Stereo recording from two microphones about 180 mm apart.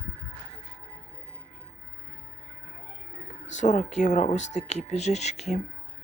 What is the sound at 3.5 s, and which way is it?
Speech, 40° left (ahead or behind).